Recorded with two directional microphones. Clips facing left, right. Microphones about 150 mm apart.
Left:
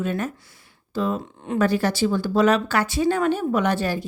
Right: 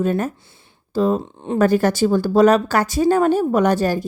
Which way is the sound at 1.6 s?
45° right (ahead or behind).